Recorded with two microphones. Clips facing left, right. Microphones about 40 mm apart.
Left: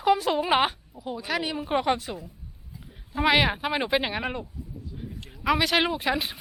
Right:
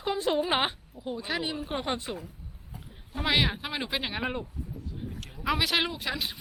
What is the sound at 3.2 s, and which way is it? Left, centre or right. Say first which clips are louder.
Speech: left 5 dB; centre.